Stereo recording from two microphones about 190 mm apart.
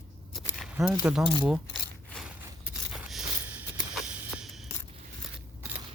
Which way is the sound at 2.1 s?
5° right (ahead or behind).